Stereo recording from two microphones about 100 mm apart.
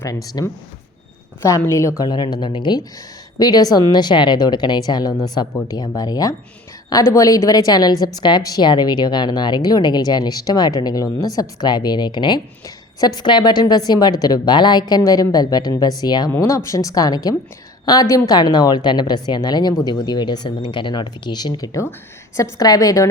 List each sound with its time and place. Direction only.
0.4 s speech: 40° left (ahead or behind)
1.4 s a woman's voice: 30° left (ahead or behind)
2.0 s speech: 45° left (ahead or behind)
3.3 s speech: 40° left (ahead or behind)
12.6 s speech: 40° left (ahead or behind)
16.3 s speech: 25° left (ahead or behind)